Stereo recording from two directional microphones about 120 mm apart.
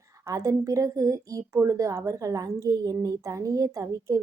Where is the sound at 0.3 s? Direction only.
25° right (ahead or behind).